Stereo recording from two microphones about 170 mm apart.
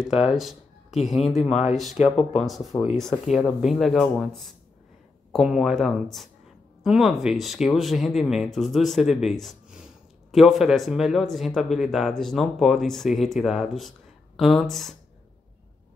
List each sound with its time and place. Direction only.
0.3 s speech: centre (ahead or behind)
1.5 s speech: 40° left (ahead or behind)
1.8 s speech: centre (ahead or behind)